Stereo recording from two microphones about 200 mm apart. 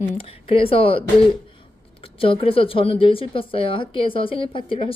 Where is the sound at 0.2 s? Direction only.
25° left (ahead or behind).